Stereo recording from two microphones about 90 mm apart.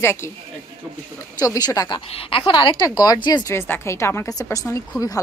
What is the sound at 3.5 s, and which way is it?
A woman's voice, 25° left (ahead or behind).